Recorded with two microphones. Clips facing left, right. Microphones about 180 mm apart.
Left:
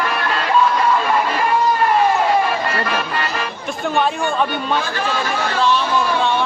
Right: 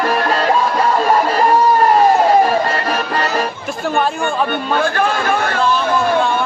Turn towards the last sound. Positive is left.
turn(degrees=-55)  # may be behind; listen again after turning